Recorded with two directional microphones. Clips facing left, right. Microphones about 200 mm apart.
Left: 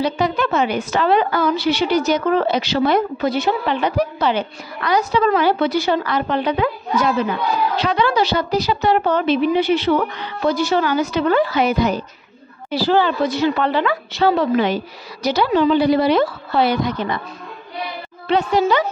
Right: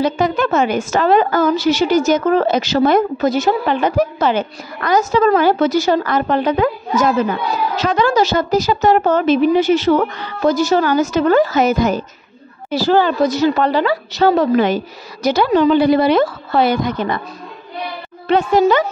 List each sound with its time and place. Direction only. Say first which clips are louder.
0.0 s a woman's voice: right 3 dB; 45° right (ahead or behind)
18.3 s a woman's voice: right 4 dB; 50° right (ahead or behind)